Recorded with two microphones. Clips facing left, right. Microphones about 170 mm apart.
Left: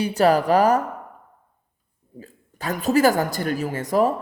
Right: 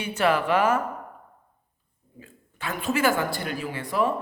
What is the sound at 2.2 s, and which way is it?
Speech, 40° left (ahead or behind).